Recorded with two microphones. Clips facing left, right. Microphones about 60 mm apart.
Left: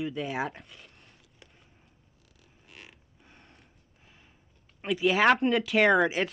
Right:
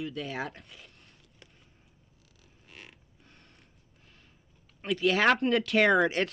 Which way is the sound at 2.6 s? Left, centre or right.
Centre.